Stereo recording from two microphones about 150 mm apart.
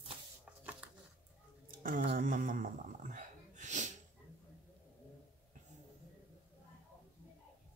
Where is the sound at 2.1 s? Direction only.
65° right (ahead or behind).